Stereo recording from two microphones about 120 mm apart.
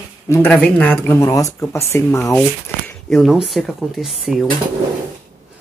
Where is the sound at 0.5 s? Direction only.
10° left (ahead or behind).